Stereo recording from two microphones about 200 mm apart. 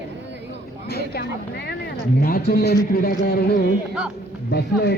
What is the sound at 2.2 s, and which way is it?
A man's voice, 50° left (ahead or behind).